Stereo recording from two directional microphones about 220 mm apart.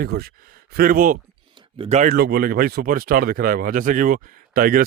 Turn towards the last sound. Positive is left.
turn(degrees=-40)  # may be behind; listen again after turning